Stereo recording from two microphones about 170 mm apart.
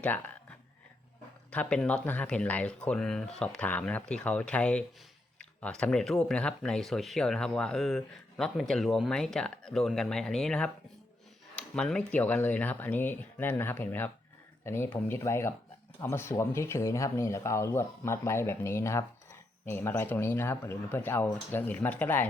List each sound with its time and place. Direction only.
1.5 s speech: 5° left (ahead or behind)